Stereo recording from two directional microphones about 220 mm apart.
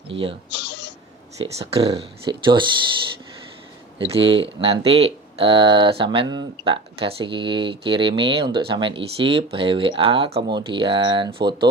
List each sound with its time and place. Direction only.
0.1 s speech: 25° right (ahead or behind)
0.5 s a sound: 50° left (ahead or behind)
1.5 s speech: 25° right (ahead or behind)
4.0 s speech: 25° right (ahead or behind)